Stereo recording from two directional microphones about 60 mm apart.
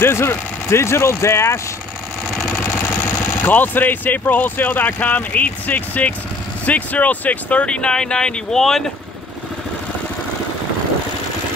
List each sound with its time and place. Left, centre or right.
0.0 s speech: left
2.4 s vehicle: left
3.4 s speech: left; by 8.8 s centre